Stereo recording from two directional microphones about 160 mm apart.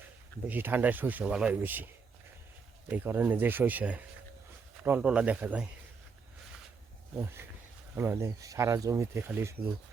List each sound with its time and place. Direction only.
0.4 s speech: 10° right (ahead or behind)
7.2 s speech: 15° right (ahead or behind)